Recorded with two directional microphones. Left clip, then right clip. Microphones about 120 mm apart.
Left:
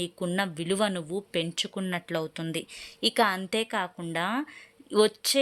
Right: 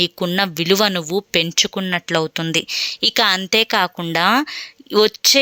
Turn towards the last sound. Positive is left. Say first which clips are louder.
# right 10 dB
turn(degrees=-25)  # may be behind; listen again after turning